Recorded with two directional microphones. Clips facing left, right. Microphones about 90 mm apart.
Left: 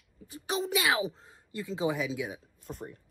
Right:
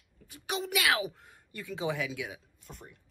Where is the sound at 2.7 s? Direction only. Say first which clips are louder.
Left 9 dB; 35° left (ahead or behind).